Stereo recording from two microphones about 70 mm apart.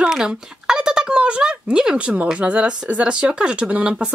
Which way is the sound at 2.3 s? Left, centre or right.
Centre.